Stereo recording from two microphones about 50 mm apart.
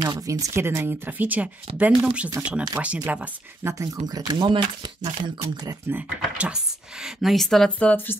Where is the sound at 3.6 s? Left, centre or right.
Right.